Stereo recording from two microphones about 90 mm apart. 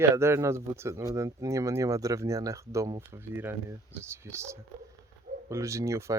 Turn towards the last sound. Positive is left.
turn(degrees=-35)  # may be behind; listen again after turning